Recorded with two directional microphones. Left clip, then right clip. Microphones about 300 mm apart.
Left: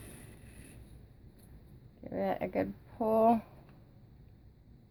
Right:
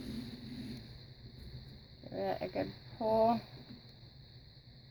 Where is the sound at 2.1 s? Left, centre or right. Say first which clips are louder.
Left 3 dB; centre.